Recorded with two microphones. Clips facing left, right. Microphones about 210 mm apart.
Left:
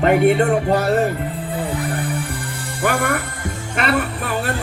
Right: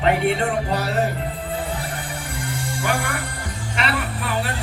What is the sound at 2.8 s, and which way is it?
Music, 55° left (ahead or behind).